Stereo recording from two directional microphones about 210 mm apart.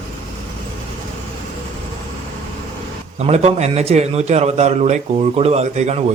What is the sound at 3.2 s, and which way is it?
A man's voice, 30° right (ahead or behind).